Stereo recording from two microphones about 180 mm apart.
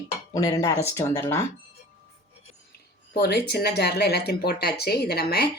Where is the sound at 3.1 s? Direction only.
65° left (ahead or behind).